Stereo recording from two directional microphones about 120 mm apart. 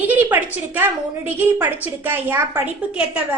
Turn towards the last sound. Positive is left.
turn(degrees=-10)  # may be behind; listen again after turning